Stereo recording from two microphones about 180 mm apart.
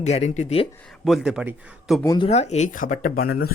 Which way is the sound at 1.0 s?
Centre (ahead or behind).